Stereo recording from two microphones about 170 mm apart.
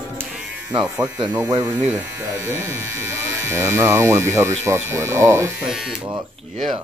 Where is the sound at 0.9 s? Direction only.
20° right (ahead or behind).